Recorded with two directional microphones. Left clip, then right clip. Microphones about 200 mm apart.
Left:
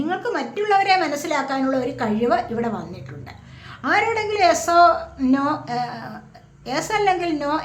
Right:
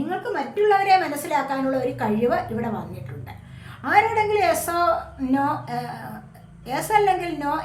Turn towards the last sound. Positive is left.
turn(degrees=30)  # may be behind; listen again after turning